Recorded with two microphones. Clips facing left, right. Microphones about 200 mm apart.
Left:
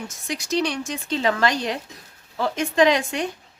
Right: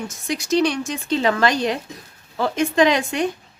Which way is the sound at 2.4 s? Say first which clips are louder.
Right 2 dB; 60° right (ahead or behind).